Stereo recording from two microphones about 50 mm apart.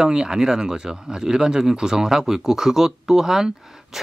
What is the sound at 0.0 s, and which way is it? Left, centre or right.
Speech, centre.